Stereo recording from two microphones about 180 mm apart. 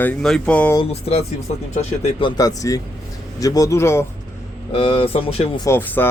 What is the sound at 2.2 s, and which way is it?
Speech, 20° left (ahead or behind).